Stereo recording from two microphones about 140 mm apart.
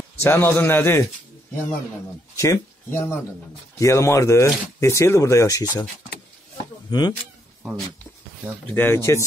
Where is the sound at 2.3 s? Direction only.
20° left (ahead or behind).